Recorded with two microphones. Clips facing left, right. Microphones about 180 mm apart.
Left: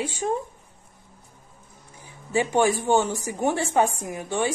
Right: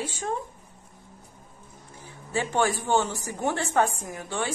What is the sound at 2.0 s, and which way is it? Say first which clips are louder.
A woman's voice: left 5 dB; 15° left (ahead or behind).